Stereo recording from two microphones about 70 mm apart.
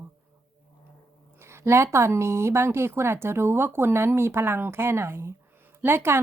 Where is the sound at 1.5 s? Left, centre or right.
Right.